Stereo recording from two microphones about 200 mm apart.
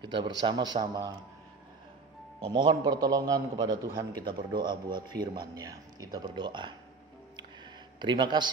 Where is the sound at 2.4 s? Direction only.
25° right (ahead or behind).